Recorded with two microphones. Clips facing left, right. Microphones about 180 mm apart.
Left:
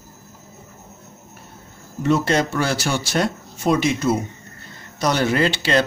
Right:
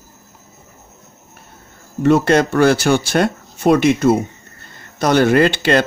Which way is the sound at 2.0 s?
60° right (ahead or behind).